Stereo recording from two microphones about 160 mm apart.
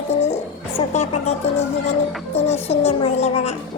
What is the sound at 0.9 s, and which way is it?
A child's voice, 40° left (ahead or behind).